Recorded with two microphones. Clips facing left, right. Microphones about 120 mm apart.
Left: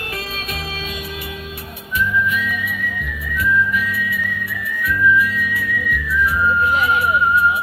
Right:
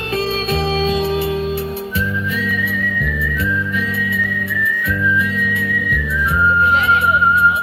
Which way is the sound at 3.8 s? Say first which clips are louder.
Right 2 dB; 25° right (ahead or behind).